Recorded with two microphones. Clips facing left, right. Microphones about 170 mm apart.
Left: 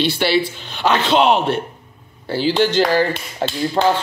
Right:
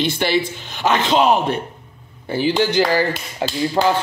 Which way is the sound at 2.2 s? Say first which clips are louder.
Left 1 dB; 15° right (ahead or behind).